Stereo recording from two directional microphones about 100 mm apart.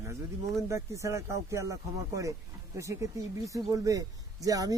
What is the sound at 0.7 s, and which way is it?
Speech, 30° right (ahead or behind).